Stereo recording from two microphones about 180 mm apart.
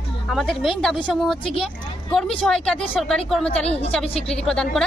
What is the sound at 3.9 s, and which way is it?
Speech, 5° left (ahead or behind).